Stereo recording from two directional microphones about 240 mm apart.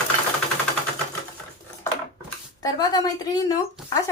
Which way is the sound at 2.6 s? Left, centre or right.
Centre.